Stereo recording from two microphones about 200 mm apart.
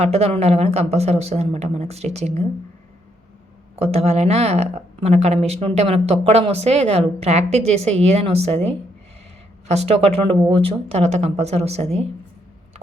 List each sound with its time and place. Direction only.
0.0 s speech: 30° right (ahead or behind)
3.8 s speech: 30° right (ahead or behind)
9.6 s speech: 30° right (ahead or behind)